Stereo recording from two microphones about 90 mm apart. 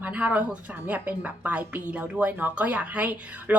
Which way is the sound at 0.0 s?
15° right (ahead or behind).